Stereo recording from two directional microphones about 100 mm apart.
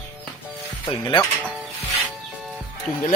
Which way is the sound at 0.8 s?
50° left (ahead or behind).